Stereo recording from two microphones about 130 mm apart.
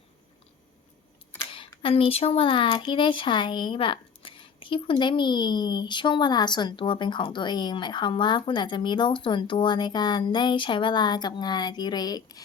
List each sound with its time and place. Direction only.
1.8 s speech: 45° left (ahead or behind)